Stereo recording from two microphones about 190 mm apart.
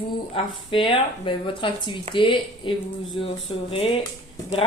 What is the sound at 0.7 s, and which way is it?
Speech, 25° left (ahead or behind).